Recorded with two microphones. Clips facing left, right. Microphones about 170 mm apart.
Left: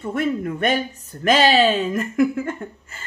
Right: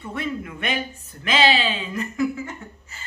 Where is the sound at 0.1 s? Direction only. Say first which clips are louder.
Left 7 dB; 45° left (ahead or behind).